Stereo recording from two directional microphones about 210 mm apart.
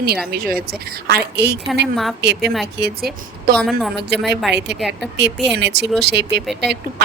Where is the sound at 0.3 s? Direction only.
45° right (ahead or behind).